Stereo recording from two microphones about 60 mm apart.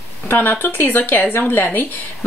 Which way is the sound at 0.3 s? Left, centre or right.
Left.